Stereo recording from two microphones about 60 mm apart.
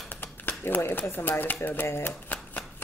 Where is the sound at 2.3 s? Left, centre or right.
Left.